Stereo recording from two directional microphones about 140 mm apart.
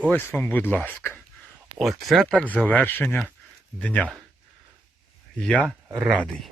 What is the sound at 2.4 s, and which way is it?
Speech, 10° left (ahead or behind).